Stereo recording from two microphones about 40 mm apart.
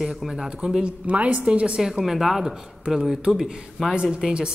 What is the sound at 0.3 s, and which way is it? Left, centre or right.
Speech, centre.